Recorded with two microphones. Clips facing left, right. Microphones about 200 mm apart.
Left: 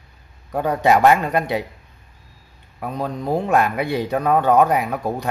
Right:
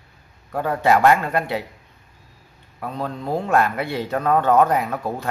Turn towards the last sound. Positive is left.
turn(degrees=15)  # may be behind; listen again after turning